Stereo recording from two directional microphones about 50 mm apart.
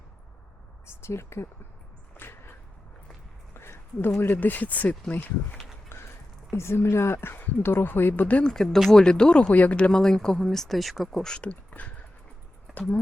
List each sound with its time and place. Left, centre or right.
0.9 s speech: left
2.1 s a sound: left
4.3 s speech: left
5.9 s a sound: left
6.5 s speech: left
8.4 s speech: centre
9.5 s speech: left
9.9 s speech: centre
11.2 s speech: centre
11.7 s a sound: left
12.7 s speech: left